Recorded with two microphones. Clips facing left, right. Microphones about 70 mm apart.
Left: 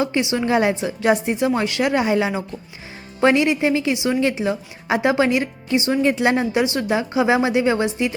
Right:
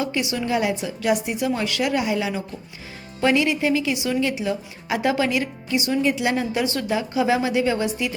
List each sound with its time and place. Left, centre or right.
0.0 s a woman's voice: left
6.0 s a woman's voice: left